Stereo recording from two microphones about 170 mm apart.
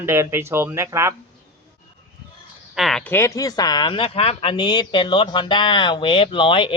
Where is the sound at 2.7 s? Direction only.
Centre (ahead or behind).